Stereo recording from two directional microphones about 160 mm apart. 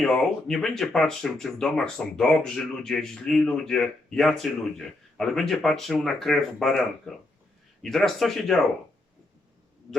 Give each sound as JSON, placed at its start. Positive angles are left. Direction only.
{"t": 0.0, "sound": "speech", "side_deg": 5}